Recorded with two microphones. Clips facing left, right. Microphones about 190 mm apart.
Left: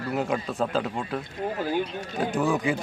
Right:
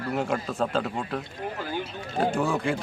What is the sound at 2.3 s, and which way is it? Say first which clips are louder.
Speech: left 5 dB; 15° left (ahead or behind).